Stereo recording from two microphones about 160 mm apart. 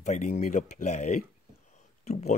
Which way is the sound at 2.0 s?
45° left (ahead or behind).